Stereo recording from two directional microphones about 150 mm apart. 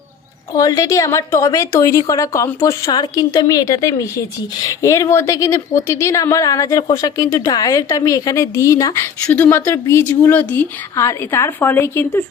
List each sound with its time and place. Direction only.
0.5 s a woman's voice: 20° left (ahead or behind)
9.2 s a woman's voice: 10° left (ahead or behind)